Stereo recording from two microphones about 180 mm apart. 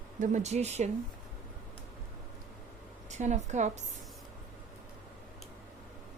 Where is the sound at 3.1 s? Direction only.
40° right (ahead or behind).